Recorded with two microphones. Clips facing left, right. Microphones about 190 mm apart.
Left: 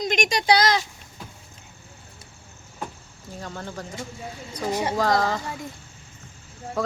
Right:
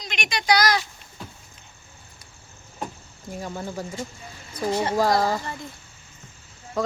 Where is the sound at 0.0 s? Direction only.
45° left (ahead or behind); by 0.8 s 25° left (ahead or behind).